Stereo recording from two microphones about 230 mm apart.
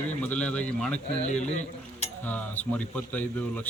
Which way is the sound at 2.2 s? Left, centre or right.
Centre.